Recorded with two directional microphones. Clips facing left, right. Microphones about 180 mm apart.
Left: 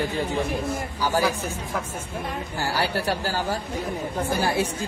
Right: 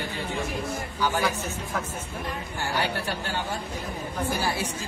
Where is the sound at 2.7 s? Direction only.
35° left (ahead or behind).